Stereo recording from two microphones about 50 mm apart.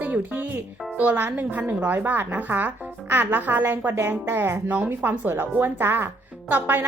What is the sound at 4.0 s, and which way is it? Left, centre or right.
A woman's voice, right.